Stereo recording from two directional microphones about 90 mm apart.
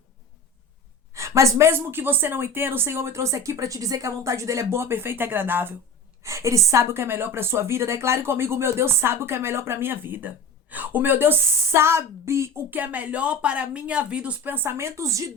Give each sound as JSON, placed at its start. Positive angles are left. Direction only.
{"t": 1.1, "sound": "a woman's voice", "side_deg": -35}
{"t": 6.2, "sound": "a woman's voice", "side_deg": -35}
{"t": 12.7, "sound": "speech", "side_deg": -20}